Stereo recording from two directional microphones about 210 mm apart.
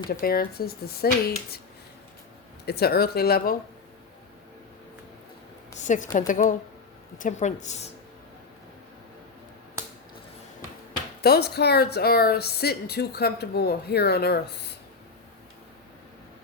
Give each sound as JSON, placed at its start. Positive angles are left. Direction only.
{"t": 0.1, "sound": "a woman's voice", "side_deg": 45}
{"t": 2.6, "sound": "a woman's voice", "side_deg": 50}
{"t": 5.8, "sound": "a woman's voice", "side_deg": 35}
{"t": 11.2, "sound": "a woman's voice", "side_deg": 50}